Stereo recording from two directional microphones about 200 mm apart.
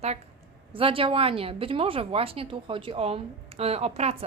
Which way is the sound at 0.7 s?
25° right (ahead or behind).